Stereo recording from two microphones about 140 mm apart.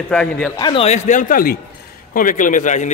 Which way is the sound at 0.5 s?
30° left (ahead or behind).